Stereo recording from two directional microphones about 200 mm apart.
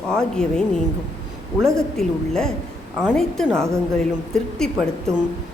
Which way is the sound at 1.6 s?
Centre (ahead or behind).